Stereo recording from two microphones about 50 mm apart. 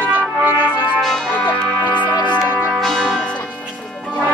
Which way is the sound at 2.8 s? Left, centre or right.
Centre.